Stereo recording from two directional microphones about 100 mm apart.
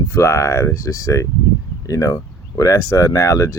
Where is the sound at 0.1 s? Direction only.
25° left (ahead or behind).